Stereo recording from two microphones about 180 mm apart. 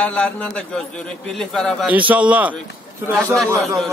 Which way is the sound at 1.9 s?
10° right (ahead or behind).